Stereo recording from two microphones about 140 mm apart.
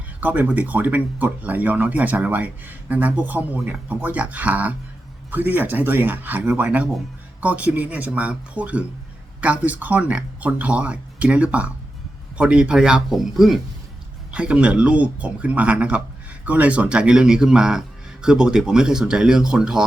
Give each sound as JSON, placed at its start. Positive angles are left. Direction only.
{"t": 0.2, "sound": "speech", "side_deg": -10}